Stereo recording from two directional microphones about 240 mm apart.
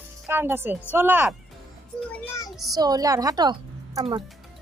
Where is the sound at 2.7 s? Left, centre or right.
Centre.